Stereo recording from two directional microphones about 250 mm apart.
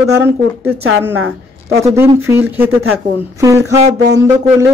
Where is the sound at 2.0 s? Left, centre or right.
Centre.